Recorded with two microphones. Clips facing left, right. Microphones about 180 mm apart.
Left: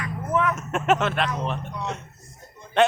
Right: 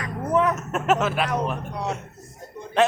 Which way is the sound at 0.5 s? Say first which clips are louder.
Even; centre (ahead or behind).